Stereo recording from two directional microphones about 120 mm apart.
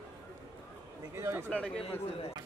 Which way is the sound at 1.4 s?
10° left (ahead or behind).